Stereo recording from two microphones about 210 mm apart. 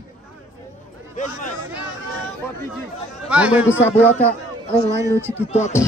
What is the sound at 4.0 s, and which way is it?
Speech, 5° left (ahead or behind).